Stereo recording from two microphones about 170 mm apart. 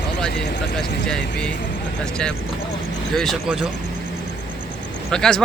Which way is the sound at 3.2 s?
Centre (ahead or behind).